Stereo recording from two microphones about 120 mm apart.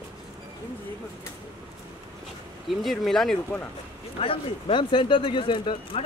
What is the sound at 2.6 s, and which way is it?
Speech, centre (ahead or behind).